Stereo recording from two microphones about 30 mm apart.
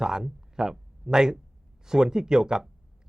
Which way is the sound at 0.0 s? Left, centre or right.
Right.